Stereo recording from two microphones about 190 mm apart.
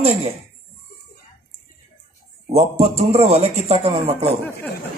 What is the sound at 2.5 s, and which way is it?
A man's voice, 35° right (ahead or behind).